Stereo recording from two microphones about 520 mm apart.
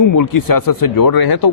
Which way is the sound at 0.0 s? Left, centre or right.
Left.